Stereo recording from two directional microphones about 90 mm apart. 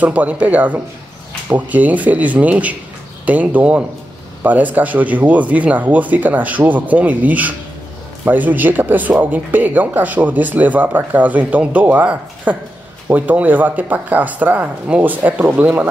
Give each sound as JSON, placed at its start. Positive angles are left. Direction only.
{"t": 0.0, "sound": "speech", "side_deg": -15}